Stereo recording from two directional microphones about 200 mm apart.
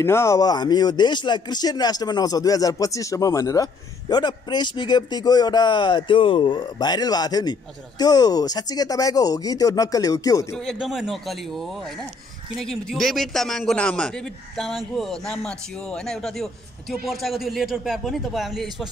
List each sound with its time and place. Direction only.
0.0 s speech: 15° left (ahead or behind)
10.5 s a man's voice: centre (ahead or behind)